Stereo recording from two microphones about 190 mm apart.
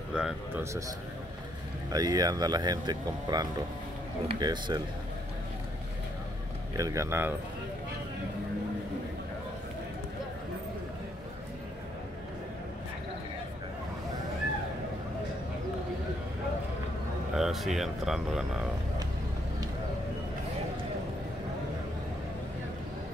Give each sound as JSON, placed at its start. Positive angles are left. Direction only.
{"t": 0.2, "sound": "speech", "side_deg": -5}
{"t": 1.9, "sound": "speech", "side_deg": -20}
{"t": 6.8, "sound": "speech", "side_deg": -15}
{"t": 17.4, "sound": "speech", "side_deg": 0}